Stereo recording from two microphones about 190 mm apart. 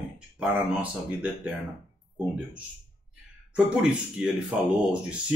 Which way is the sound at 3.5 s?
5° right (ahead or behind).